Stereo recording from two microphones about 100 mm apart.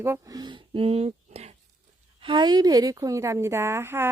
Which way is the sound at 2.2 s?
55° right (ahead or behind).